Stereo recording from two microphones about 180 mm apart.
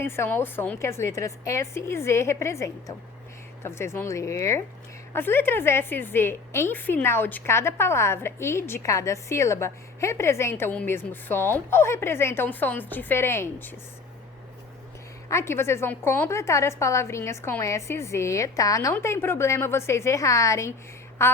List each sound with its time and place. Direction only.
0.0 s a woman's voice: 15° left (ahead or behind)
15.3 s a woman's voice: 15° left (ahead or behind)